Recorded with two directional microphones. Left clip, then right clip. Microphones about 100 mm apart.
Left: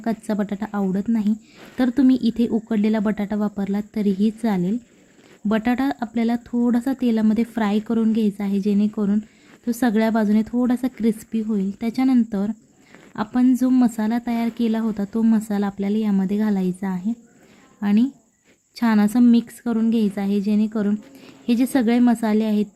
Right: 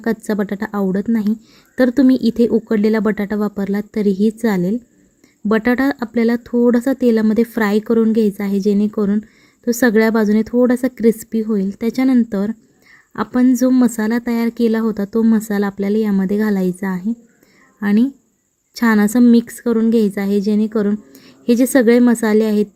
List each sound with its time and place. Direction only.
0.0 s a woman's voice: 35° right (ahead or behind)